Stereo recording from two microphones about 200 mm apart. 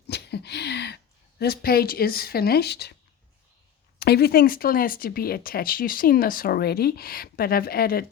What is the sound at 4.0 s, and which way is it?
Speech, 50° left (ahead or behind).